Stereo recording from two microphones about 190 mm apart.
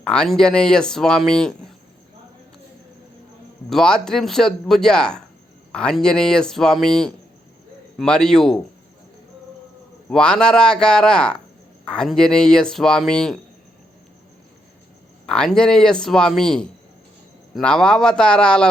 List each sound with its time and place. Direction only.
0.0 s speech: 5° left (ahead or behind)
3.7 s speech: 5° left (ahead or behind)
10.1 s speech: 5° left (ahead or behind)
15.3 s speech: 5° left (ahead or behind)